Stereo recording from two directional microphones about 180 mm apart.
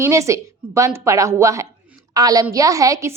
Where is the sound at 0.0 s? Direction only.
15° right (ahead or behind).